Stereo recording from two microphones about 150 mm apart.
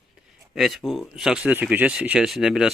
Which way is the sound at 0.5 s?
Centre (ahead or behind).